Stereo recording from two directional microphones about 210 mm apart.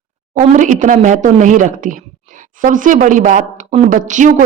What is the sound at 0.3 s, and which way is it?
A woman's voice, 35° right (ahead or behind).